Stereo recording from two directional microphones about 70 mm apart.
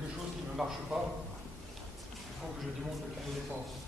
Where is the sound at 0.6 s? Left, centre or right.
Centre.